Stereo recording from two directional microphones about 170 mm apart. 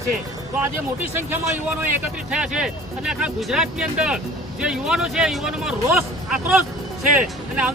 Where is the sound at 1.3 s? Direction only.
15° right (ahead or behind).